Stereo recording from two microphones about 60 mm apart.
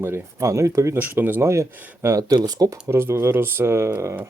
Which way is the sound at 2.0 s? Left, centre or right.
Right.